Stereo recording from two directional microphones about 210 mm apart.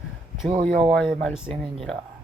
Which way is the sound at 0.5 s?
25° right (ahead or behind).